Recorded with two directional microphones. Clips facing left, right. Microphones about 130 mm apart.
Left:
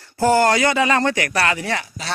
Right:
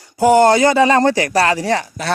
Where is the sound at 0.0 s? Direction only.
15° right (ahead or behind).